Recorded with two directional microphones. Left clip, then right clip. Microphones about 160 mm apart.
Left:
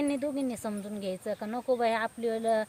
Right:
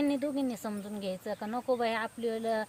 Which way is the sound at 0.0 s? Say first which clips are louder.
Even; 25° left (ahead or behind).